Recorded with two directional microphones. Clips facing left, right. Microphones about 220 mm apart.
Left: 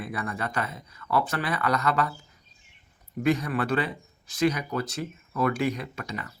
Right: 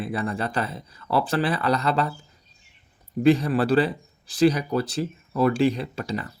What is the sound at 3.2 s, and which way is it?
Speech, 30° right (ahead or behind).